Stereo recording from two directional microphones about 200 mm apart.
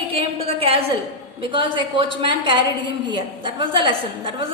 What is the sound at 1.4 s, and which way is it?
A woman's voice, 25° right (ahead or behind).